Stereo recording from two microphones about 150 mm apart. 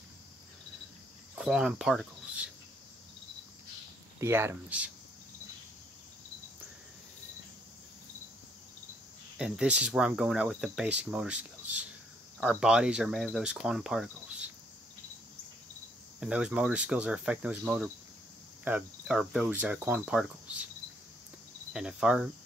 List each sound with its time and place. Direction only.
1.3 s cricket: 5° right (ahead or behind)
4.2 s speech: 15° right (ahead or behind)
9.4 s speech: 5° right (ahead or behind)
16.2 s speech: 5° right (ahead or behind)
21.7 s speech: 5° right (ahead or behind)